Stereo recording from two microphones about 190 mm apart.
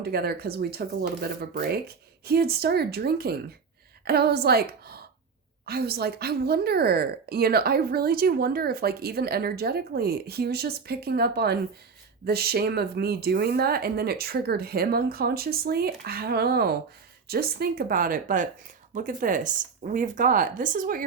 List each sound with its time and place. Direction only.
0.0 s a woman's voice: 55° right (ahead or behind)